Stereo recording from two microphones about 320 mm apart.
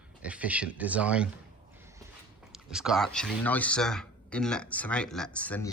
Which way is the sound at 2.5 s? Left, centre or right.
Centre.